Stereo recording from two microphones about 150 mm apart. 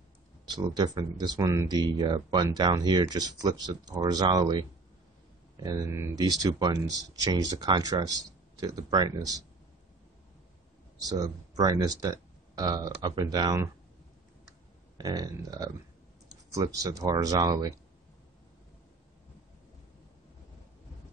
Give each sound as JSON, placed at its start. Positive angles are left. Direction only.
{"t": 0.5, "sound": "speech", "side_deg": -30}
{"t": 11.0, "sound": "speech", "side_deg": -25}
{"t": 15.0, "sound": "speech", "side_deg": -25}